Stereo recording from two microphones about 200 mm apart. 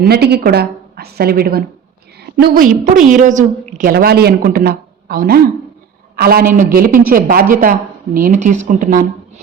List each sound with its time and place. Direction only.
0.0 s a woman's voice: 50° right (ahead or behind)